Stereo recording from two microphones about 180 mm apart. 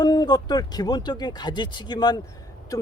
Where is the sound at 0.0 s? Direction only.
20° left (ahead or behind).